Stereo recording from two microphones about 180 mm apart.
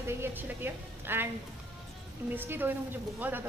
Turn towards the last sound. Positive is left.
turn(degrees=-10)  # may be behind; listen again after turning